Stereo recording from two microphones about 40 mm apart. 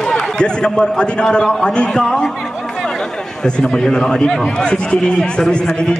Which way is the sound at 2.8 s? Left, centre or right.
Centre.